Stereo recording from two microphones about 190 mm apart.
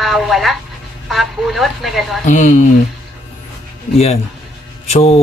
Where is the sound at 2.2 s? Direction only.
40° left (ahead or behind).